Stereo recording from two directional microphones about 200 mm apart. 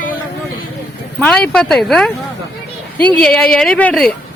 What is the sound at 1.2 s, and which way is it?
A woman's voice, 5° left (ahead or behind).